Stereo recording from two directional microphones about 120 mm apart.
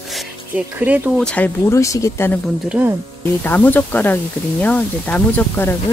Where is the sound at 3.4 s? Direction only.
15° left (ahead or behind).